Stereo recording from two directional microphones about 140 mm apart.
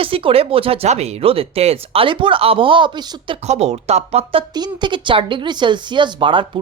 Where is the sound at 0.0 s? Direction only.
40° right (ahead or behind).